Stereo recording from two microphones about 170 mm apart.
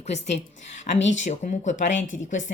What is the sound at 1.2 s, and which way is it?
Speech, 45° left (ahead or behind).